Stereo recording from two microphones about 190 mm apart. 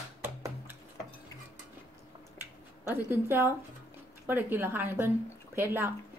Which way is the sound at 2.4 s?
10° right (ahead or behind).